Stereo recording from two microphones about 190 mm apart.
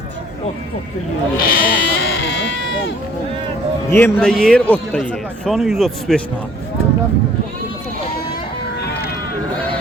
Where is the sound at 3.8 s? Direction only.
10° left (ahead or behind).